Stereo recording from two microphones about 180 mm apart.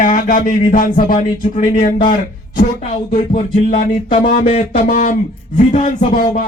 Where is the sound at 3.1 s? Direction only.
35° left (ahead or behind).